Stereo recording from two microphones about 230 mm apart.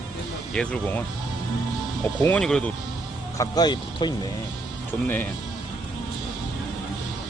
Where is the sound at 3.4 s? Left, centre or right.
Centre.